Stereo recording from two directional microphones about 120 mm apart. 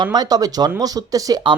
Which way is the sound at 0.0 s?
35° right (ahead or behind).